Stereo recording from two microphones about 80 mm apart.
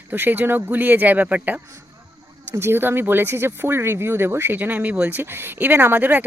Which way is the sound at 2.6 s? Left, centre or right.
Right.